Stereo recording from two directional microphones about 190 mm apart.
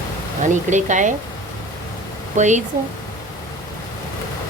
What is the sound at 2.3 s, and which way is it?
Speech, 40° right (ahead or behind).